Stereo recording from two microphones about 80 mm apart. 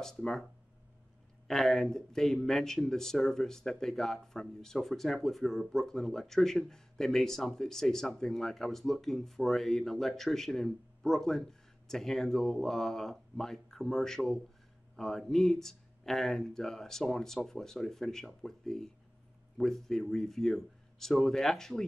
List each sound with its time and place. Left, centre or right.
0.0 s speech: centre
1.5 s speech: centre